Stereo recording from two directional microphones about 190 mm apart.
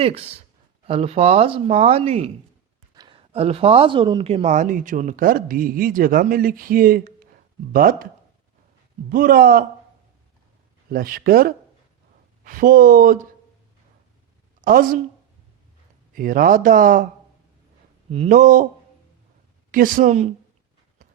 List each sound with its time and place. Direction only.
0.0 s speech: 30° right (ahead or behind)
2.9 s a sound: 20° right (ahead or behind)
3.3 s speech: 30° right (ahead or behind); by 8.0 s 50° right (ahead or behind)
9.0 s speech: 45° right (ahead or behind)
10.9 s speech: 50° right (ahead or behind)
14.6 s a woman's voice: 50° right (ahead or behind)
16.1 s speech: 45° right (ahead or behind)
18.1 s speech: 40° right (ahead or behind)
19.7 s speech: 45° right (ahead or behind)